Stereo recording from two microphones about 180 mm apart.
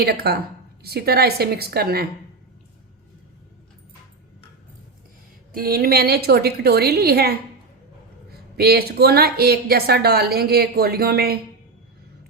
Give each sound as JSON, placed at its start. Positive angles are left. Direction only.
{"t": 0.0, "sound": "a woman's voice", "side_deg": -60}
{"t": 5.5, "sound": "a woman's voice", "side_deg": -55}